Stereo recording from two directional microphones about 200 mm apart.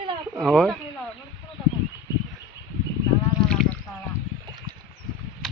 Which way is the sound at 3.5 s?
5° left (ahead or behind).